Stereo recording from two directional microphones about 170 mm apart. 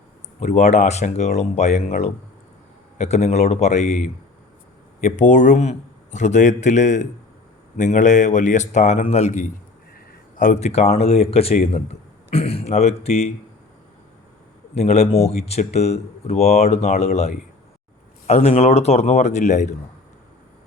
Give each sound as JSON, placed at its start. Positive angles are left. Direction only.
{"t": 0.3, "sound": "speech", "side_deg": 40}
{"t": 14.8, "sound": "speech", "side_deg": 40}